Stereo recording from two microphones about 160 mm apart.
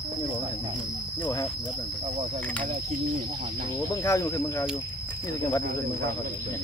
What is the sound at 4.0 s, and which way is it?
Speech, 20° left (ahead or behind).